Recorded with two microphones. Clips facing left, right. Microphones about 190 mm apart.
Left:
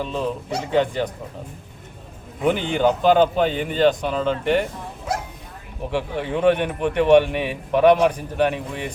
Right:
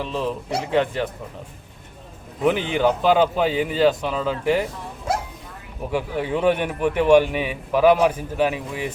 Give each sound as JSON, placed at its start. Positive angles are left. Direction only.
{"t": 0.0, "sound": "a man's voice", "side_deg": 0}
{"t": 2.5, "sound": "a man's voice", "side_deg": -5}
{"t": 5.9, "sound": "a man's voice", "side_deg": -5}